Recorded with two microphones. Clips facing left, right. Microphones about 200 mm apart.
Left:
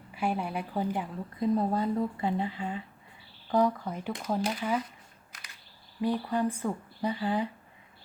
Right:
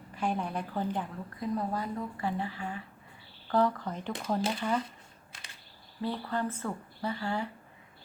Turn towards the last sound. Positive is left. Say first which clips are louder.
# left 4 dB
turn(degrees=15)  # may be behind; listen again after turning